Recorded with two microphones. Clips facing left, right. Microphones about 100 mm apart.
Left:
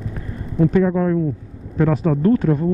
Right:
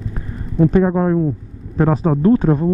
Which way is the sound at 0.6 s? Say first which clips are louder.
Right 2 dB; 35° right (ahead or behind).